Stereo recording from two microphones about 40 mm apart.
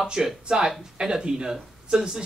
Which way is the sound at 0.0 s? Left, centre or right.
Centre.